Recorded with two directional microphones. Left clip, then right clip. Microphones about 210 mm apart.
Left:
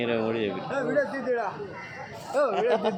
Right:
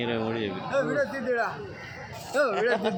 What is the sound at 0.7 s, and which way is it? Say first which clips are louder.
Speech: right 1 dB; 60° right (ahead or behind).